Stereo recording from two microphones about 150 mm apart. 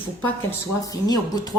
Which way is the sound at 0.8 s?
25° left (ahead or behind).